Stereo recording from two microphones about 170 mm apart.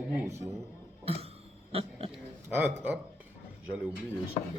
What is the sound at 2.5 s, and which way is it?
Speech, 10° right (ahead or behind).